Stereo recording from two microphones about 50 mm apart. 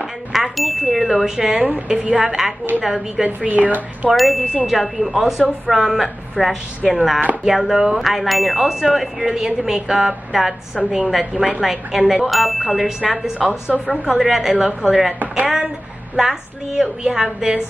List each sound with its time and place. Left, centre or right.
0.0 s speech: centre
1.9 s a woman's voice: right
2.2 s ding: centre
3.3 s a woman's voice: right
4.1 s speech: centre
7.4 s ding: centre
11.6 s speech: centre
13.1 s ding: centre
13.7 s speech: centre
14.5 s ding: centre
15.4 s ding: centre